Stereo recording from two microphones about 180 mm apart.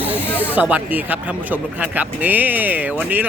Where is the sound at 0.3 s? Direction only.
10° right (ahead or behind).